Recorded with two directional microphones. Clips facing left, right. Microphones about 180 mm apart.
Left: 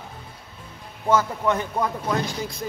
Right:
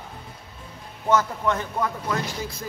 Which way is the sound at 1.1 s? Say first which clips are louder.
Left 1 dB; 10° left (ahead or behind).